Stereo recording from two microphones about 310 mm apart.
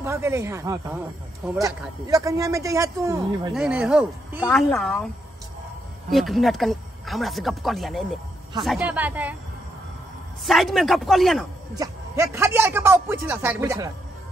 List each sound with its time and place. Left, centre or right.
0.0 s a man's voice: centre
6.0 s speech: centre
10.4 s speech: centre
11.7 s a man's voice: centre